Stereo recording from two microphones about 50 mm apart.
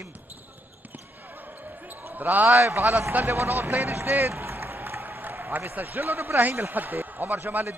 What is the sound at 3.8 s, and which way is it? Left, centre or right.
Speech, right.